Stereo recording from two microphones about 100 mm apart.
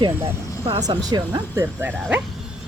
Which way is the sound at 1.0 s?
40° right (ahead or behind).